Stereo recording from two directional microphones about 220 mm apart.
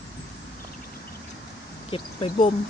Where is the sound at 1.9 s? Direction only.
25° left (ahead or behind).